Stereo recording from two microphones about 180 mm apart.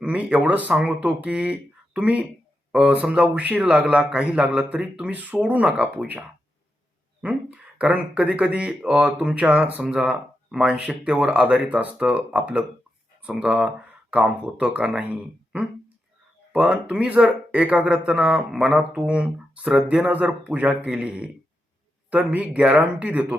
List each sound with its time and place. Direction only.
0.0 s a man's voice: 5° right (ahead or behind)